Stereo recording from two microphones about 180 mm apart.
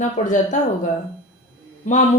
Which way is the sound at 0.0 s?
45° left (ahead or behind).